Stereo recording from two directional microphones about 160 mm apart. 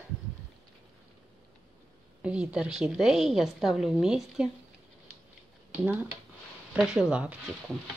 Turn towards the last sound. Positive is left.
turn(degrees=-10)  # may be behind; listen again after turning